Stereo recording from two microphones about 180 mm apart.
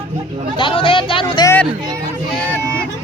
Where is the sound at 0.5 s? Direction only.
30° left (ahead or behind).